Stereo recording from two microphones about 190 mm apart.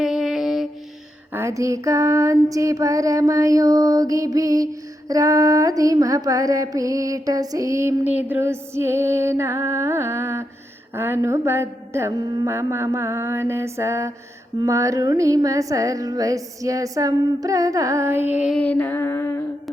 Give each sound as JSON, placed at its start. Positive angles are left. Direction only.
{"t": 0.0, "sound": "music", "side_deg": -5}
{"t": 1.3, "sound": "female singing", "side_deg": -15}
{"t": 18.5, "sound": "music", "side_deg": 5}